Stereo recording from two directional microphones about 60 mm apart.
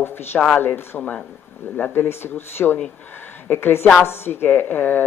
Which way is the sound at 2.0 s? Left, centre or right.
Left.